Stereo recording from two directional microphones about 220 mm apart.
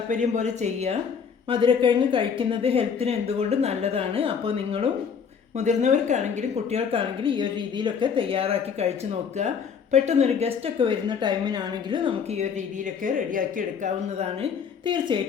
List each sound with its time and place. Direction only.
0.1 s a woman's voice: 35° right (ahead or behind)
9.9 s a woman's voice: 30° right (ahead or behind)
14.8 s a woman's voice: 20° right (ahead or behind)